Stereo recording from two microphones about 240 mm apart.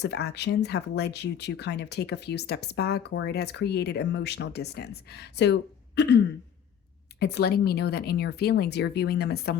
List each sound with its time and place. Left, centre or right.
0.0 s speech: left
7.2 s speech: left